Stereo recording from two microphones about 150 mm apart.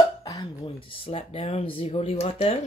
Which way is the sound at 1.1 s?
40° left (ahead or behind).